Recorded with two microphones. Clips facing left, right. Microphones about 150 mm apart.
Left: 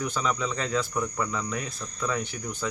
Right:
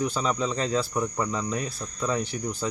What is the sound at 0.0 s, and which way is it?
Speech, 30° right (ahead or behind).